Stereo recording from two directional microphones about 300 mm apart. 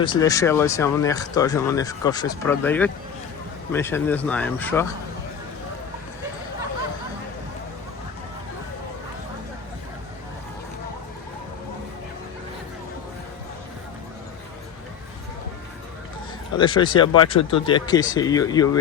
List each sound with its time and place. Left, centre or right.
0.0 s speech: centre
16.6 s speech: centre